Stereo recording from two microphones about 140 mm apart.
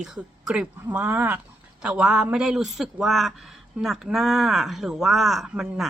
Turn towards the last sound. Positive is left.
turn(degrees=-5)  # may be behind; listen again after turning